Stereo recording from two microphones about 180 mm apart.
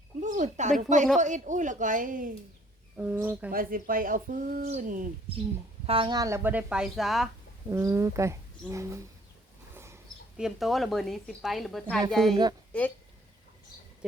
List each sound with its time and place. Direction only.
0.2 s speech: 45° right (ahead or behind)
3.0 s speech: 10° right (ahead or behind)
3.5 s speech: 50° right (ahead or behind)
5.8 s speech: 30° right (ahead or behind); by 7.3 s centre (ahead or behind)
7.7 s speech: 15° right (ahead or behind)
9.7 s dog: 15° right (ahead or behind)
10.3 s a woman's voice: centre (ahead or behind)